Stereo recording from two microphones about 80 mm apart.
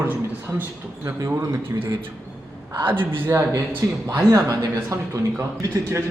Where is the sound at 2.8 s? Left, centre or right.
Right.